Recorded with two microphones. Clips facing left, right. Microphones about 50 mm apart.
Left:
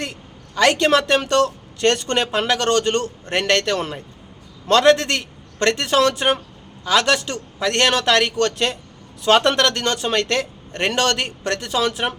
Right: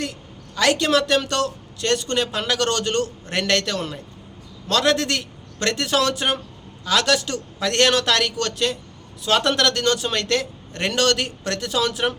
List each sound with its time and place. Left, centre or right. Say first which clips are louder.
0.0 s a man's voice: even; left